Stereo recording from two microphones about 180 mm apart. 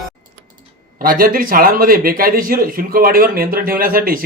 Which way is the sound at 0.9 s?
55° right (ahead or behind).